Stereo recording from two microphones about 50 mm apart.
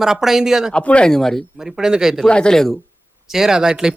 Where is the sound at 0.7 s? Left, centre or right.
Left.